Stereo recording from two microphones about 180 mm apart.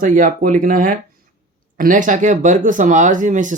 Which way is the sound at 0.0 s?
45° right (ahead or behind).